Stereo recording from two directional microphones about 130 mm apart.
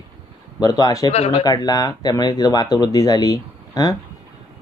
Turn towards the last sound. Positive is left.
turn(degrees=30)  # may be behind; listen again after turning